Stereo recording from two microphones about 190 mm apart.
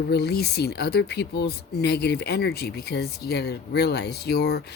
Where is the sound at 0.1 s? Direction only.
60° left (ahead or behind).